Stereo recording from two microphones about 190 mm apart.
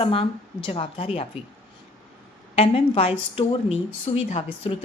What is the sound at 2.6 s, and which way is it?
A woman's voice, 30° left (ahead or behind).